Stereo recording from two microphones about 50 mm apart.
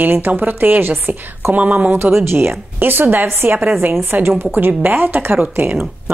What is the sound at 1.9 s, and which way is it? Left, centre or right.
A woman's voice, right.